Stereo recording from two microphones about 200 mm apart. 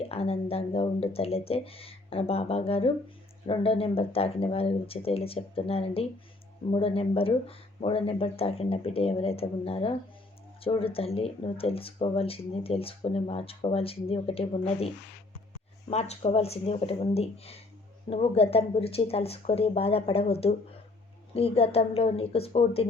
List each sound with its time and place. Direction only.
0.1 s speech: 30° left (ahead or behind)
15.9 s speech: 30° left (ahead or behind)
21.3 s speech: 30° left (ahead or behind)